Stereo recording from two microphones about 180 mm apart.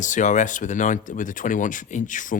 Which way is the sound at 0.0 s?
45° left (ahead or behind).